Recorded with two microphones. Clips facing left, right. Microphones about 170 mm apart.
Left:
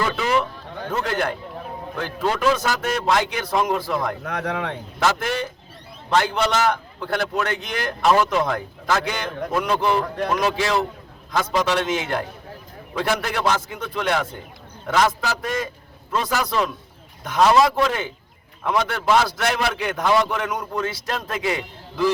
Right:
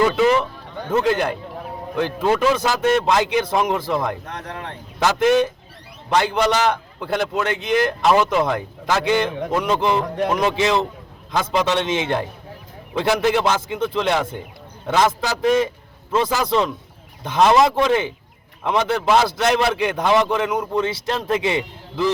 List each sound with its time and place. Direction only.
0.9 s a man's voice: 20° right (ahead or behind)
4.2 s speech: 80° left
4.9 s a man's voice: 20° right (ahead or behind)